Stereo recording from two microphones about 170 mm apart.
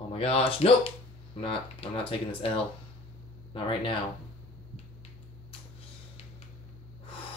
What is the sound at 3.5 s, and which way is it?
Speech, 30° left (ahead or behind).